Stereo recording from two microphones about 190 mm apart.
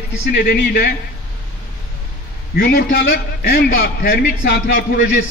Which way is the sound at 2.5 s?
50° left (ahead or behind).